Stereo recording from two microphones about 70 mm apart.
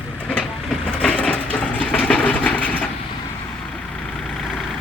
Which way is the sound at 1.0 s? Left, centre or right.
Centre.